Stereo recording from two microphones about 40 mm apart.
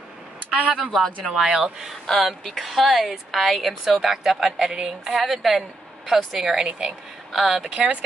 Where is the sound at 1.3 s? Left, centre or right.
Centre.